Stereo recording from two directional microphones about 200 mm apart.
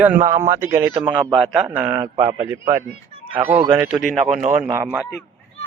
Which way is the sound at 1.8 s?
20° right (ahead or behind).